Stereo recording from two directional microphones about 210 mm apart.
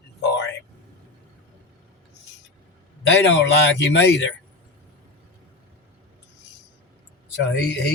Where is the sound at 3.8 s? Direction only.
55° left (ahead or behind).